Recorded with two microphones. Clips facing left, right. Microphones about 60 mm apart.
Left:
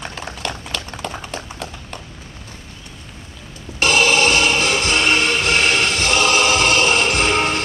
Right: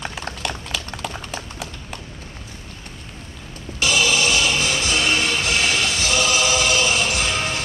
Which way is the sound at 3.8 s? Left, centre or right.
Left.